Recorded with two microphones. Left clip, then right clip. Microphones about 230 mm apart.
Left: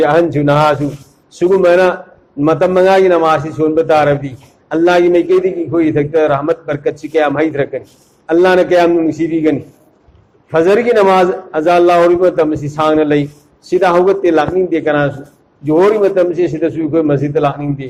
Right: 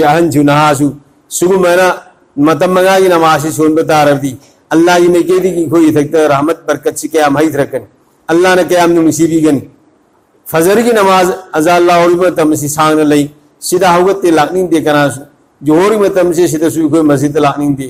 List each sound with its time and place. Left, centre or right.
0.0 s a man's voice: right